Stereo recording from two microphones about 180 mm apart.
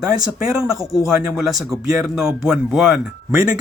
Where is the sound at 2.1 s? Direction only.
Centre (ahead or behind).